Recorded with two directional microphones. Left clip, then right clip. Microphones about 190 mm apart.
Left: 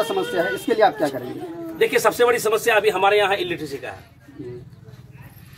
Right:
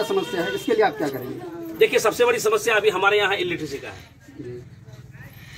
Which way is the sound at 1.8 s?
20° left (ahead or behind).